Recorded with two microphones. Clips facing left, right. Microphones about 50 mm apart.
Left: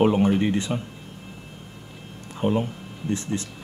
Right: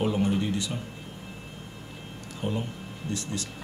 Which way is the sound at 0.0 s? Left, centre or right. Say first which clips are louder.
Left 7 dB; left.